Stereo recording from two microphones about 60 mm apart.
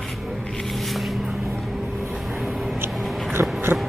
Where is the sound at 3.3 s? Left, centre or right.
Right.